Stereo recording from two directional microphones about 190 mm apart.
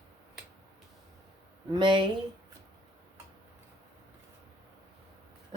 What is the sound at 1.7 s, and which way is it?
Speech, 25° right (ahead or behind).